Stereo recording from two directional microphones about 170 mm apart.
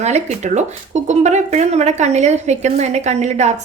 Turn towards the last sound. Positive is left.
turn(degrees=-40)  # may be behind; listen again after turning